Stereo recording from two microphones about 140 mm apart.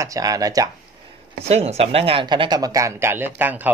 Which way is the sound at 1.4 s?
50° right (ahead or behind).